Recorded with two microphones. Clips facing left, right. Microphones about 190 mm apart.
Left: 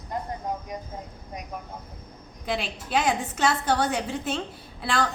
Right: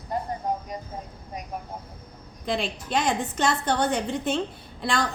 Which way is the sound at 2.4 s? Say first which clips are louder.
Right 2 dB; 5° left (ahead or behind).